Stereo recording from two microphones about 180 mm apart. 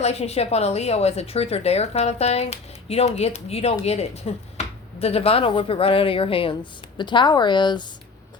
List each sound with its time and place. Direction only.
0.0 s speech: 35° left (ahead or behind)